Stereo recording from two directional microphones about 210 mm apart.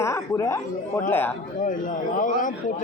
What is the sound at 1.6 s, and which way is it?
Speech, 40° left (ahead or behind).